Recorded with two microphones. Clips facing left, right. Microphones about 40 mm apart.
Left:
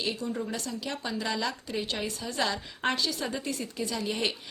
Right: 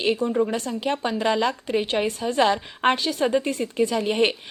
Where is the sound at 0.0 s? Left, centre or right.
Right.